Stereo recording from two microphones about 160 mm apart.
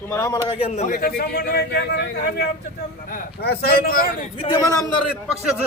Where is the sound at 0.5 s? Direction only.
40° left (ahead or behind); by 4.3 s 65° left (ahead or behind).